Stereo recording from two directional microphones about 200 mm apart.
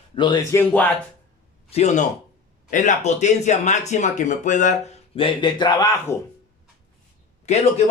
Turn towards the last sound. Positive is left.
turn(degrees=35)  # may be behind; listen again after turning